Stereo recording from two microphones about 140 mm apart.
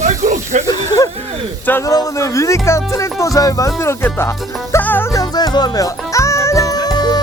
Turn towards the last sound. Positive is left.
turn(degrees=30)  # may be behind; listen again after turning